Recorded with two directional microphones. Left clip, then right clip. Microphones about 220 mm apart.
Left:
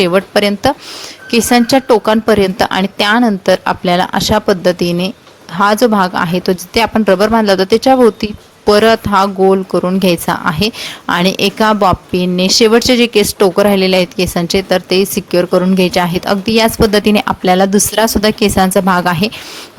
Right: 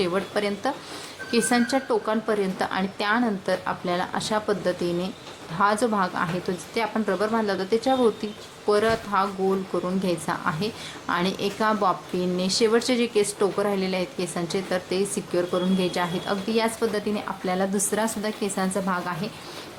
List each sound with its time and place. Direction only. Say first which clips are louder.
0.0 s a woman's voice: left 14 dB; 40° left (ahead or behind)